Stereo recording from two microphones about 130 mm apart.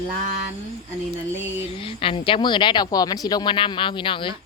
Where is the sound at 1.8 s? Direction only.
45° left (ahead or behind).